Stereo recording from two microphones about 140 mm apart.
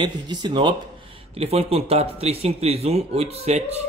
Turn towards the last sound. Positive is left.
turn(degrees=-50)  # may be behind; listen again after turning